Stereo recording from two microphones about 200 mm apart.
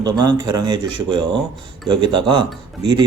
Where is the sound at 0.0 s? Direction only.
20° right (ahead or behind).